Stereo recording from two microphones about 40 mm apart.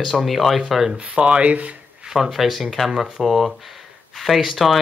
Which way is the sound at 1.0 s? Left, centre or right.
Right.